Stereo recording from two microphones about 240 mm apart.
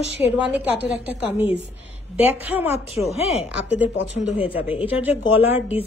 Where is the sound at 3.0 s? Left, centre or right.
Left.